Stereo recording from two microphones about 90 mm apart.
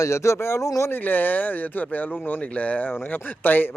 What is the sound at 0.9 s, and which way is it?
Speech, 20° left (ahead or behind).